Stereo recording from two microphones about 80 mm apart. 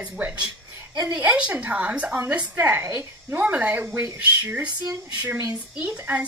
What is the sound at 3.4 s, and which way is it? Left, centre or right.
Speech, centre.